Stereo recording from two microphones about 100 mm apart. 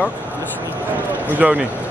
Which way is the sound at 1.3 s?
15° right (ahead or behind).